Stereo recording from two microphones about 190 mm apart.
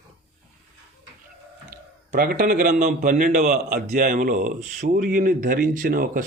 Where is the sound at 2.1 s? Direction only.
50° right (ahead or behind).